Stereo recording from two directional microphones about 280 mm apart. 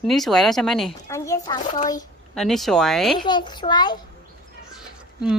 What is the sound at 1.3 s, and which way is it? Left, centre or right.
Speech, centre.